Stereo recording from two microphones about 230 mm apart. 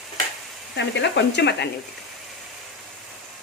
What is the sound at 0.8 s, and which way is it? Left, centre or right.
Speech, left.